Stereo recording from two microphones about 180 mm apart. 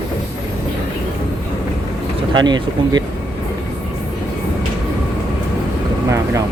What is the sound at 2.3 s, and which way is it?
Speech, 25° right (ahead or behind).